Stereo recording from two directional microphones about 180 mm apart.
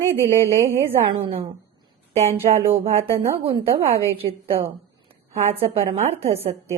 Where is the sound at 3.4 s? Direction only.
35° right (ahead or behind).